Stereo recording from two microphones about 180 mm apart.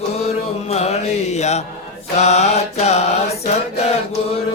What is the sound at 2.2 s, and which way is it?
Mantra, 35° left (ahead or behind).